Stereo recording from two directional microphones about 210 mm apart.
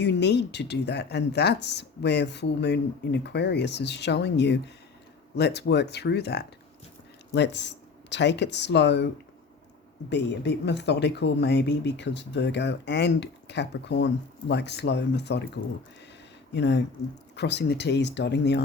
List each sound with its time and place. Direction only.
0.0 s speech: 55° left (ahead or behind)
10.1 s speech: 55° left (ahead or behind)